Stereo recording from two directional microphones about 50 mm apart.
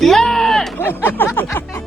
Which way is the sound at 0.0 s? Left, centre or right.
Centre.